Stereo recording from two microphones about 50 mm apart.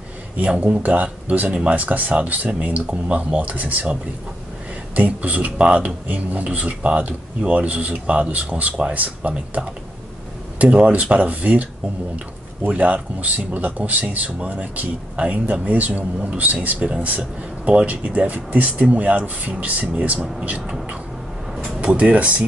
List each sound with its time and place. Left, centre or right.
0.4 s speech: right
1.5 s speech: centre
1.8 s speech: right
12.6 s speech: right
21.8 s speech: right